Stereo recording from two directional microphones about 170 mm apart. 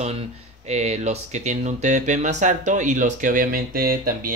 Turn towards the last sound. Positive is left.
turn(degrees=-60)  # may be behind; listen again after turning